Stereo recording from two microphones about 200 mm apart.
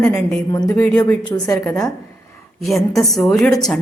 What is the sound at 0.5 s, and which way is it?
A woman's voice, 15° left (ahead or behind).